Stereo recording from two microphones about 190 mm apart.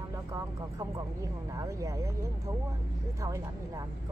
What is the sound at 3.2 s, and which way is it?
Speech, 15° right (ahead or behind).